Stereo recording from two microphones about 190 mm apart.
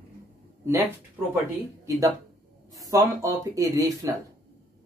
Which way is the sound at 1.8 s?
15° right (ahead or behind).